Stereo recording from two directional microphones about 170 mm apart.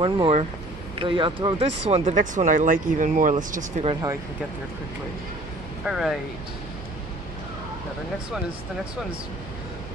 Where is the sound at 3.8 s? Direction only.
25° right (ahead or behind).